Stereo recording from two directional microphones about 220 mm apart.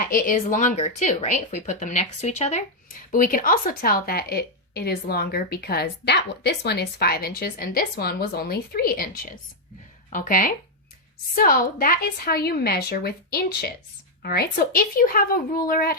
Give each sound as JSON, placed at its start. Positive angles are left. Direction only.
{"t": 0.0, "sound": "a woman's voice", "side_deg": 40}